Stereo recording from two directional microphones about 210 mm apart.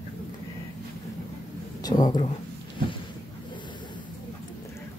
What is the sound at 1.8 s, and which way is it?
Speech, 20° left (ahead or behind).